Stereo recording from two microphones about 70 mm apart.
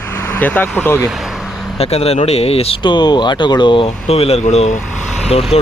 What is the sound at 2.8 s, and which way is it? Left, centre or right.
Speech, left.